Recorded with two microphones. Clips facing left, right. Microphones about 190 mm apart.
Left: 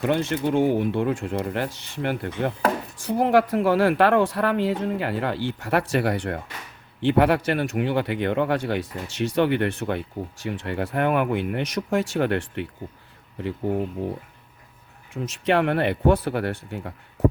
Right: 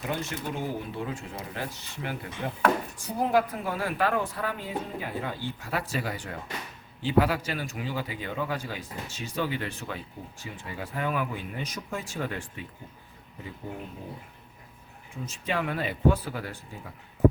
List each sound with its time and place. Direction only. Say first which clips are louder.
0.0 s speech: left 10 dB; 80° left; by 2.5 s 65° left (ahead or behind)
3.1 s speech: left 6 dB; 80° left
15.1 s speech: left 9 dB; 80° left